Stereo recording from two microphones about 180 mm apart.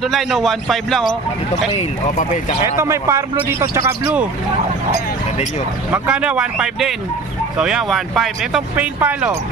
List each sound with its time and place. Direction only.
0.0 s speech: centre (ahead or behind)
1.8 s speech: 40° left (ahead or behind)
2.6 s speech: 15° right (ahead or behind)
5.9 s speech: 5° right (ahead or behind)